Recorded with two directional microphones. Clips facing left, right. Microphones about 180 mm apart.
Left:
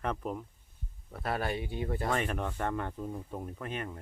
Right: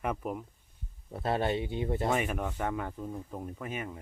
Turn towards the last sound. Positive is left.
turn(degrees=-5)  # may be behind; listen again after turning